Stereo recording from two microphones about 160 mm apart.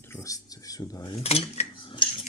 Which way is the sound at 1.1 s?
40° left (ahead or behind).